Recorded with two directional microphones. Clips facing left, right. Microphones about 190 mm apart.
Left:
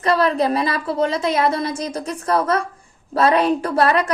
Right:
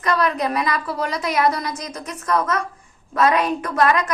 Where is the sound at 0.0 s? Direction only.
30° left (ahead or behind).